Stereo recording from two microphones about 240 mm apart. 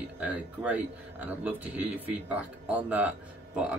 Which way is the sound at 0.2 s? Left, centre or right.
Centre.